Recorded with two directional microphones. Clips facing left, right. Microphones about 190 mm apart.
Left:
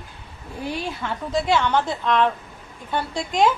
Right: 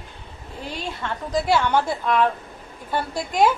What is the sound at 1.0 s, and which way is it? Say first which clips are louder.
Speech: right 3 dB; 5° left (ahead or behind).